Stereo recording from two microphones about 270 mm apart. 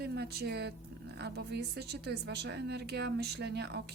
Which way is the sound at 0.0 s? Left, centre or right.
Right.